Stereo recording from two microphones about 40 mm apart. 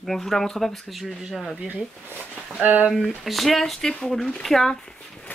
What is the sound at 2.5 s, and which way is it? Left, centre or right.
Speech, right.